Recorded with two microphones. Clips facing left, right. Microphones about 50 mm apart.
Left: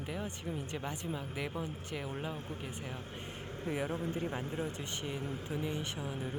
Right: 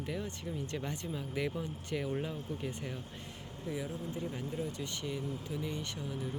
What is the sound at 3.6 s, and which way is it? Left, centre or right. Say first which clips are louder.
Speech: left 3 dB; left.